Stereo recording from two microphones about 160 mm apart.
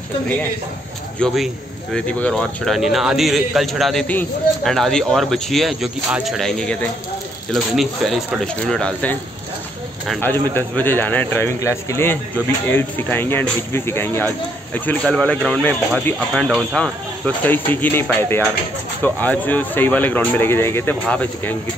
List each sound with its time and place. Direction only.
1.2 s speech: centre (ahead or behind)
10.2 s speech: 10° left (ahead or behind)